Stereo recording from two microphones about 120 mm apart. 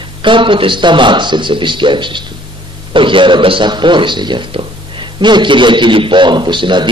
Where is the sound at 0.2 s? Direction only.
45° right (ahead or behind).